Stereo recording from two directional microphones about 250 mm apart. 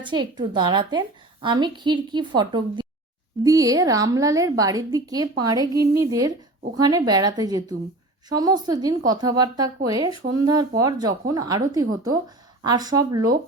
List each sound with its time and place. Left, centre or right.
0.0 s a woman's voice: centre